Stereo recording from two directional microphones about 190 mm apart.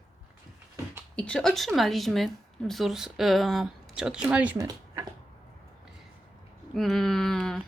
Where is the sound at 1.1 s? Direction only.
5° left (ahead or behind).